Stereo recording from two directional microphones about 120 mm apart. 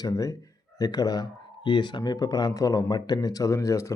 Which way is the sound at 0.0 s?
25° left (ahead or behind).